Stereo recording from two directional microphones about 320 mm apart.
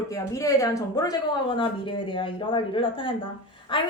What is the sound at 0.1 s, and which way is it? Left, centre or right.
Speech, centre.